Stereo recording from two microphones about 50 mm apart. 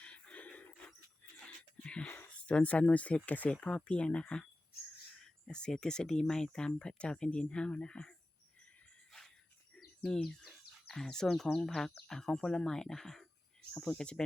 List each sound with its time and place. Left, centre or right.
0.0 s a sound: left
1.8 s a sound: left
2.2 s speech: left
9.7 s bird: centre
10.8 s speech: centre
13.9 s speech: centre